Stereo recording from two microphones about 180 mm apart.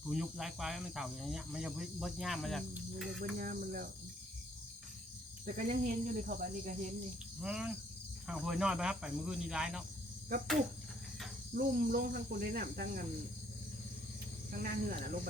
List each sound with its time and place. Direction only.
0.1 s speech: 5° right (ahead or behind)
3.2 s speech: 50° right (ahead or behind)
5.5 s speech: 45° right (ahead or behind)
7.4 s speech: 5° right (ahead or behind)
11.5 s cricket: 50° right (ahead or behind)
14.6 s speech: 50° right (ahead or behind)